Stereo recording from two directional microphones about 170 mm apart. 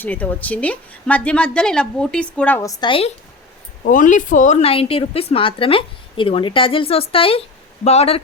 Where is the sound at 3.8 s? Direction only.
50° left (ahead or behind).